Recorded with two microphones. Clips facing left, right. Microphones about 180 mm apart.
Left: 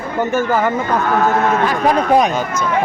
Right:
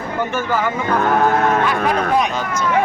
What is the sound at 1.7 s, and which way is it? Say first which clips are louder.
Speech: left 3 dB; 40° left (ahead or behind).